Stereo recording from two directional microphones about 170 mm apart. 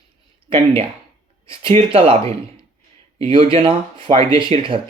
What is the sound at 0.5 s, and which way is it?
Speech, 35° right (ahead or behind).